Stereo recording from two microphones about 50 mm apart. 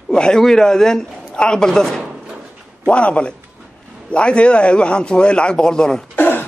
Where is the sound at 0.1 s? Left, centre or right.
Centre.